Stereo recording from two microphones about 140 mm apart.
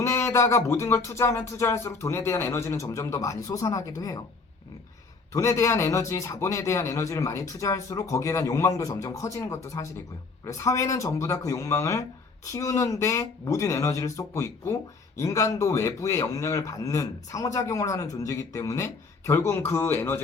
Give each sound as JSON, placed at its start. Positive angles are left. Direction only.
{"t": 0.0, "sound": "speech", "side_deg": 20}
{"t": 5.3, "sound": "speech", "side_deg": 20}